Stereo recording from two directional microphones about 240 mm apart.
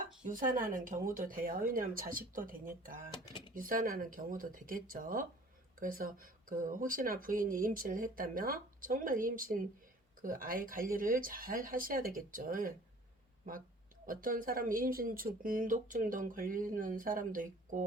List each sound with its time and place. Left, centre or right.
0.0 s speech: right
14.1 s speech: right